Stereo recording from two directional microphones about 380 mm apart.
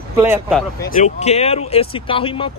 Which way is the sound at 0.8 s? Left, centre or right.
Centre.